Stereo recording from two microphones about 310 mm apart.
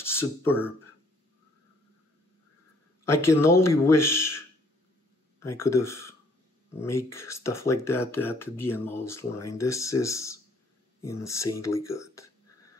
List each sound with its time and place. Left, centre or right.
0.0 s speech: centre
3.2 s speech: centre
5.4 s speech: centre
7.2 s speech: centre